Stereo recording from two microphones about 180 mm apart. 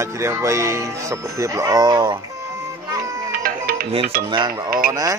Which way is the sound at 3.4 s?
55° right (ahead or behind).